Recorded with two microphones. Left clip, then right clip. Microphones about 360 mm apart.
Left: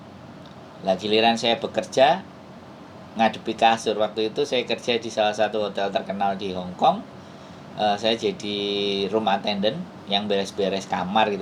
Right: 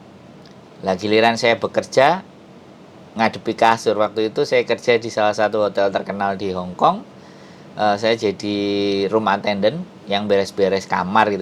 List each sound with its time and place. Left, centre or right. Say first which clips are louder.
0.9 s speech: right 4 dB; right
3.2 s speech: right 3 dB; right
7.8 s speech: right 5 dB; right
8.4 s speech: right 5 dB; right
9.0 s speech: right 4 dB; right